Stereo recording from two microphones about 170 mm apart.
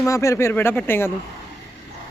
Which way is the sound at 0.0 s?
20° left (ahead or behind).